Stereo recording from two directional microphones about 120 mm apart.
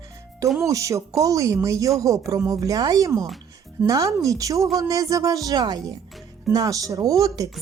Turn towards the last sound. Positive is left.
turn(degrees=-30)  # may be behind; listen again after turning